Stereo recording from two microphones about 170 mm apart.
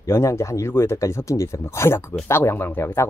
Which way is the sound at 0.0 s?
15° left (ahead or behind).